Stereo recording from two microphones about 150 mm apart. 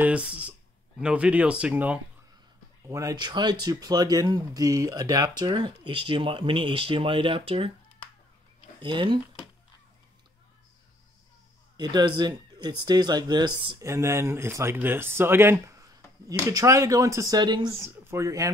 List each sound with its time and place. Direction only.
0.0 s speech: 10° right (ahead or behind)
2.9 s speech: 20° right (ahead or behind); by 7.7 s 35° right (ahead or behind)
8.8 s speech: 35° right (ahead or behind)
11.7 s speech: 30° right (ahead or behind)
13.7 s speech: 20° right (ahead or behind)
17.7 s speech: 15° right (ahead or behind)